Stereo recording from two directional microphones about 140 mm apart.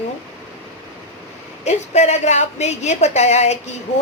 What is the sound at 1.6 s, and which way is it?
A woman's voice, 55° left (ahead or behind).